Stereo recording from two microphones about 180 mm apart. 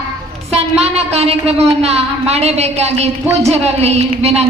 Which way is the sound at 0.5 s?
35° right (ahead or behind).